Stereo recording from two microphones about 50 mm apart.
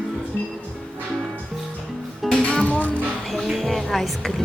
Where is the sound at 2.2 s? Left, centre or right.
Centre.